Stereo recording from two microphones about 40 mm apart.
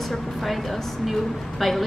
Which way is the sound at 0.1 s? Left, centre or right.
Centre.